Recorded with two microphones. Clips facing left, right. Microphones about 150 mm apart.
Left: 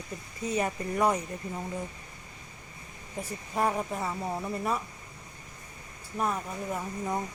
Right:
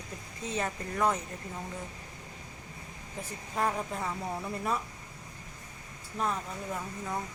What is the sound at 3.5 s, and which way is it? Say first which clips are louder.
Speech: left 3 dB; 10° left (ahead or behind).